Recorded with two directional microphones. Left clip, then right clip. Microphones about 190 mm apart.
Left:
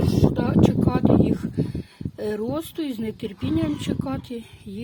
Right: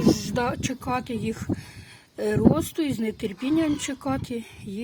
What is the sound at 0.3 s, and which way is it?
Speech, 5° right (ahead or behind).